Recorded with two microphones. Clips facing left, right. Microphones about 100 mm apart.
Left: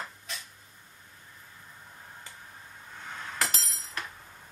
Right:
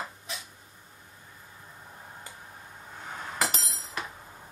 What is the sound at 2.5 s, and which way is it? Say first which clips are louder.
Chink: right 2 dB; 15° right (ahead or behind).